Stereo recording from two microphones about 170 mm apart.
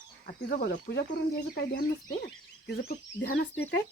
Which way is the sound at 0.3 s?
65° left (ahead or behind).